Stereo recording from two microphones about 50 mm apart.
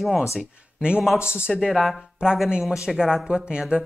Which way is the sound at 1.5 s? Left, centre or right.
Centre.